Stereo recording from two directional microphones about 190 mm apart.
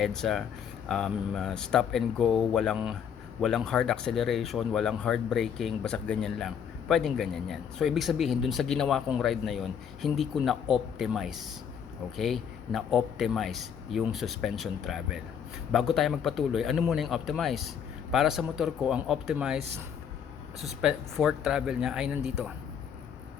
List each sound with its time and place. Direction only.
0.0 s speech: centre (ahead or behind)